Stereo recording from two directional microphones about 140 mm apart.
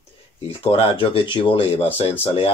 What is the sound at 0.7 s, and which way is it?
Speech, 40° left (ahead or behind).